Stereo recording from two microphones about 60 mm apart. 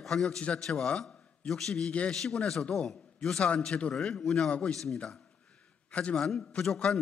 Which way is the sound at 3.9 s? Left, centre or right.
Centre.